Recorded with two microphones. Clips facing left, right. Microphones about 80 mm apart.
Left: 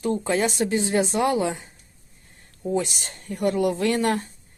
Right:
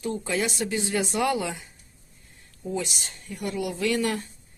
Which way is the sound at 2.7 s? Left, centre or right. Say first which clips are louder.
Left 5 dB; left.